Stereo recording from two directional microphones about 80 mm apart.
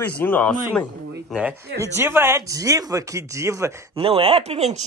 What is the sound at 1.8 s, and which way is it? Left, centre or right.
Speech, right.